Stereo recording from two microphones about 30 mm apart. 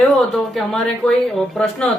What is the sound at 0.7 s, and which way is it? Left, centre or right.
Speech, centre.